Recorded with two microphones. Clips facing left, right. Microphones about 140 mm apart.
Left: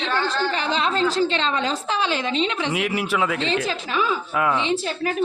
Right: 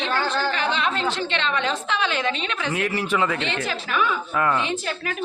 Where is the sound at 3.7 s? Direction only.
25° left (ahead or behind).